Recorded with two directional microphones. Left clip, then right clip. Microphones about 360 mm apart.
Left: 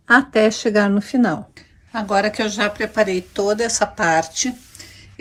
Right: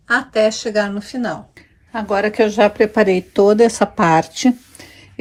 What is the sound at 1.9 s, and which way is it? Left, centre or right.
A woman's voice, centre.